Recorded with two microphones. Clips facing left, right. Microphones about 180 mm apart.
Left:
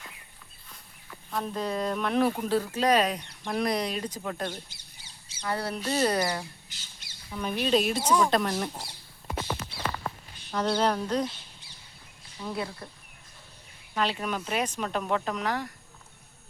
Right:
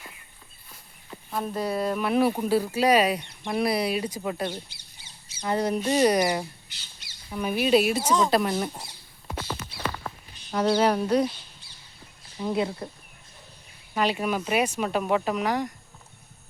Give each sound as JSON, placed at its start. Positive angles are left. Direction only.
{"t": 1.3, "sound": "speech", "side_deg": -5}
{"t": 4.7, "sound": "crow", "side_deg": 45}
{"t": 5.5, "sound": "speech", "side_deg": -20}
{"t": 6.7, "sound": "squawk", "side_deg": 45}
{"t": 7.3, "sound": "speech", "side_deg": -10}
{"t": 10.5, "sound": "speech", "side_deg": -10}
{"t": 12.4, "sound": "speech", "side_deg": -20}
{"t": 13.9, "sound": "speech", "side_deg": -10}